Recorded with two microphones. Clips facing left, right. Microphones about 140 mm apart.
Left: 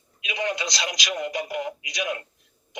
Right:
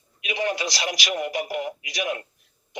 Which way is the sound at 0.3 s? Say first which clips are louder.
Right 2 dB; 25° right (ahead or behind).